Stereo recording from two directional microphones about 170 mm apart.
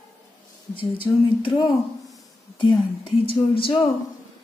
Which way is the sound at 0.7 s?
30° left (ahead or behind).